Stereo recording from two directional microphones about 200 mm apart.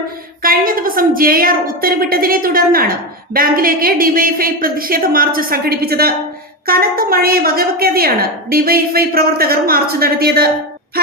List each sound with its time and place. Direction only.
0.4 s a woman's voice: 45° right (ahead or behind)